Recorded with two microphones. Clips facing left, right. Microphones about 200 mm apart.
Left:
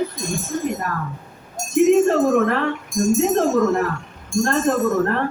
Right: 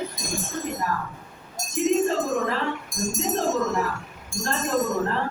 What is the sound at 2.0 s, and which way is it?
Speech, 65° left (ahead or behind).